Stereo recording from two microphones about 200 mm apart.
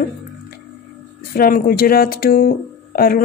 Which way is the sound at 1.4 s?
45° left (ahead or behind).